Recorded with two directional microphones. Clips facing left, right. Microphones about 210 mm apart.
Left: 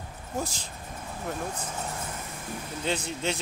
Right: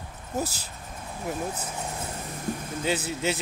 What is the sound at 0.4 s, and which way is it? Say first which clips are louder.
Speech: right 2 dB; 5° right (ahead or behind).